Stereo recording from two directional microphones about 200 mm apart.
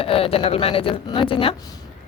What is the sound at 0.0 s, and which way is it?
A woman's voice, 30° left (ahead or behind).